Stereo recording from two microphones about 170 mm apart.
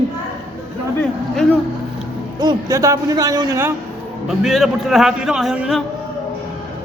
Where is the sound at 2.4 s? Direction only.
25° right (ahead or behind).